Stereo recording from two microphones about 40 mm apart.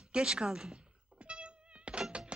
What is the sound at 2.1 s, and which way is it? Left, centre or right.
Music, right.